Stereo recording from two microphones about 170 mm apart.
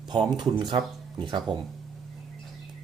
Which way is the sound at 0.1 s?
25° right (ahead or behind).